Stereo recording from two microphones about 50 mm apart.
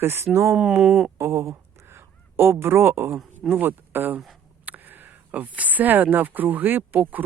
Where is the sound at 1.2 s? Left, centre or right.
Right.